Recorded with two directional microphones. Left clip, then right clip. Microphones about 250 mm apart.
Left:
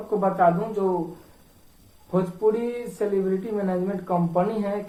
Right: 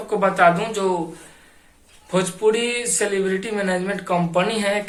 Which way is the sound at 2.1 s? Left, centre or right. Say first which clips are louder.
Right 4 dB; right.